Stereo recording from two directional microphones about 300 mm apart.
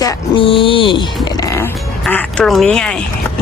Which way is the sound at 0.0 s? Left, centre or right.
Centre.